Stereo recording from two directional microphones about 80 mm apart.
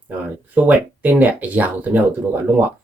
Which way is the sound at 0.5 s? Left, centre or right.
Right.